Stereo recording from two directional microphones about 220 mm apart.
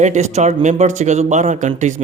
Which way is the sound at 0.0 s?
30° right (ahead or behind).